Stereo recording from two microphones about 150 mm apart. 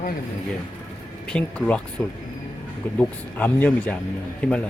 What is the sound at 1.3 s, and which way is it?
Speech, 5° left (ahead or behind).